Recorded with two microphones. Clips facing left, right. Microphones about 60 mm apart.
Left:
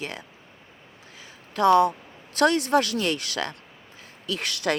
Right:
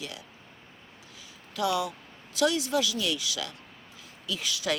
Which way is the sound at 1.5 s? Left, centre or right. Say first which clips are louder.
Left 10 dB; left.